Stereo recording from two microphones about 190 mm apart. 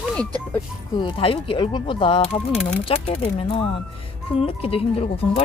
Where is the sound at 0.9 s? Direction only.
25° left (ahead or behind).